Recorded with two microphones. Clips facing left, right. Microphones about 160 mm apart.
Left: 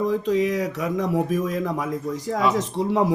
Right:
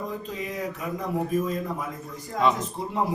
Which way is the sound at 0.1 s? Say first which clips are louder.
Left 12 dB; 90° left.